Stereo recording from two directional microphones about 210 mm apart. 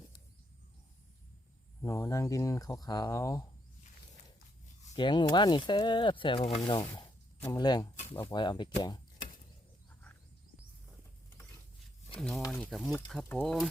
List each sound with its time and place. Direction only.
1.8 s speech: 15° left (ahead or behind)
4.8 s speech: 20° left (ahead or behind)
6.8 s speech: 10° left (ahead or behind)
12.1 s speech: 5° left (ahead or behind)